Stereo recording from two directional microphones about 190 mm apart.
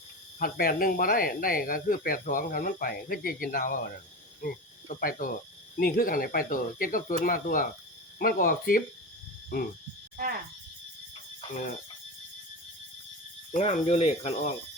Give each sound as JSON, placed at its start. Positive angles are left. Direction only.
{"t": 0.3, "sound": "speech", "side_deg": 50}
{"t": 11.5, "sound": "speech", "side_deg": 40}
{"t": 13.5, "sound": "speech", "side_deg": 35}